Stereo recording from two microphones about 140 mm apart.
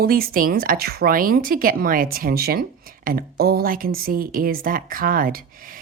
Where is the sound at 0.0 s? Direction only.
90° right.